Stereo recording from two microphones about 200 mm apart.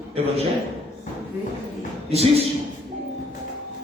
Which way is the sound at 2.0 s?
30° right (ahead or behind).